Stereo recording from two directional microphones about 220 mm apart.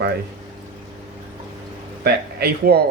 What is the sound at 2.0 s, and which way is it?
Speech, 45° right (ahead or behind).